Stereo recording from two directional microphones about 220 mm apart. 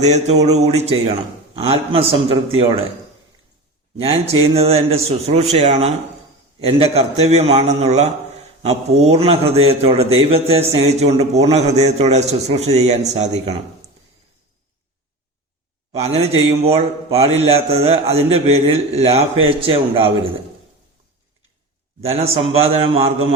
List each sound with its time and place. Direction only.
0.0 s a man's voice: 30° right (ahead or behind)
4.0 s a man's voice: 25° right (ahead or behind)
15.9 s a man's voice: 25° right (ahead or behind)
22.0 s a man's voice: 25° right (ahead or behind)